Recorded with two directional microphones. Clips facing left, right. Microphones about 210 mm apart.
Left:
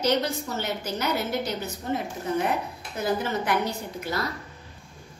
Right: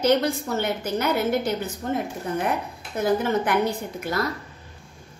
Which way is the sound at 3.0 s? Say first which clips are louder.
Right 5 dB; 55° right (ahead or behind).